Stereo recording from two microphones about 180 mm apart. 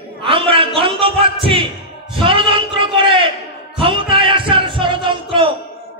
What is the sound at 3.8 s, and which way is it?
Music, 30° right (ahead or behind).